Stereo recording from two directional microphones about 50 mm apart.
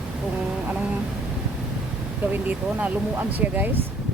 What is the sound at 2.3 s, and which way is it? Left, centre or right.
Speech, right.